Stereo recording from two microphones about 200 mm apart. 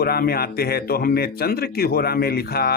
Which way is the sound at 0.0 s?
50° left (ahead or behind).